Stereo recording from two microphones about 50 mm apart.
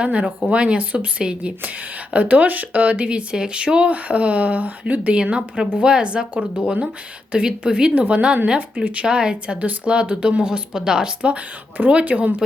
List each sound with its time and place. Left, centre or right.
0.0 s speech: right
5.2 s a woman's voice: centre
8.7 s speech: right
9.0 s speech: centre